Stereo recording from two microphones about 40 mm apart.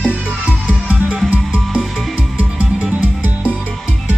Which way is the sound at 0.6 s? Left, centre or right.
Right.